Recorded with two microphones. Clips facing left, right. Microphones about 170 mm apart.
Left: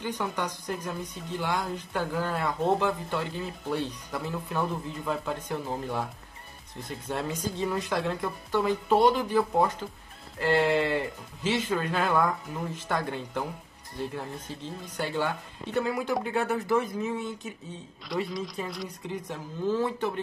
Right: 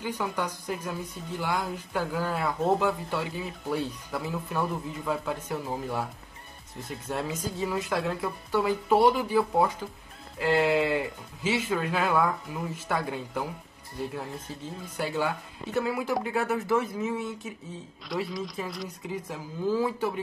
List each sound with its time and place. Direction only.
0.0 s a woman's voice: 5° right (ahead or behind)
15.0 s a woman's voice: centre (ahead or behind)